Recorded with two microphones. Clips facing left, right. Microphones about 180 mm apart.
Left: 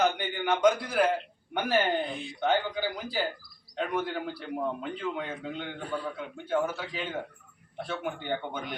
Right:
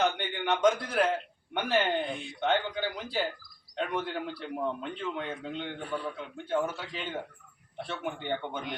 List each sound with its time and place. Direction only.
0.0 s a man's voice: 5° left (ahead or behind)